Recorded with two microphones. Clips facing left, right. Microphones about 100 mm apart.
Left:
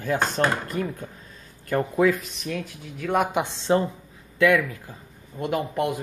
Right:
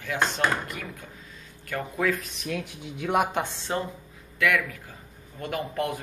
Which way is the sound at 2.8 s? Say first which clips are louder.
Left 1 dB; 15° right (ahead or behind).